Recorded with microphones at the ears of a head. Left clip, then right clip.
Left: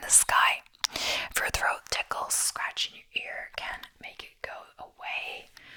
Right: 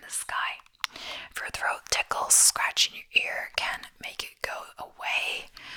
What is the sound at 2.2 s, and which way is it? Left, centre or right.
Whispering, right.